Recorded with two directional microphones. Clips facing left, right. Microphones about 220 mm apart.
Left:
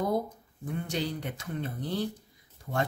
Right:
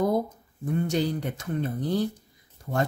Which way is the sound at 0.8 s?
45° right (ahead or behind).